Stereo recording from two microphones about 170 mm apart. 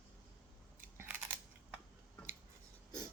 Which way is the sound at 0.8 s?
10° right (ahead or behind).